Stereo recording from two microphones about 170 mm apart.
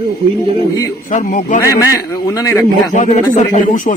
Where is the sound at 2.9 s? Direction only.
45° left (ahead or behind).